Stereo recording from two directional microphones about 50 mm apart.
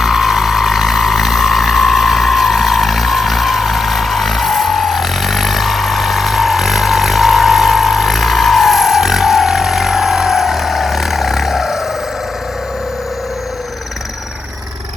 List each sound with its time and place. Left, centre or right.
0.0 s vehicle: centre